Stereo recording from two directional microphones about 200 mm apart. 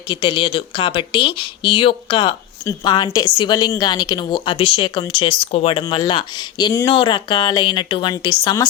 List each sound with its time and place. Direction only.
0.1 s speech: 25° left (ahead or behind)